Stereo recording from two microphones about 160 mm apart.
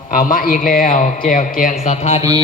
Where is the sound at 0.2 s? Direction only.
60° left (ahead or behind).